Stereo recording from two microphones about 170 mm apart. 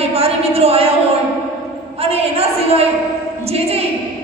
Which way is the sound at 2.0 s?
35° right (ahead or behind).